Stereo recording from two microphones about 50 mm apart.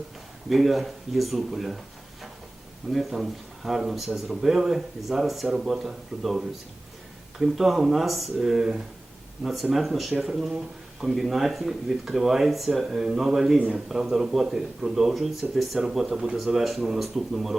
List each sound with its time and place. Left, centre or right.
0.5 s speech: centre
2.9 s speech: centre
13.6 s speech: right
13.8 s speech: centre